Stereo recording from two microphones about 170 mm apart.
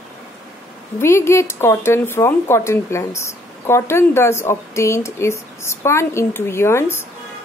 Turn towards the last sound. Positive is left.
turn(degrees=15)  # may be behind; listen again after turning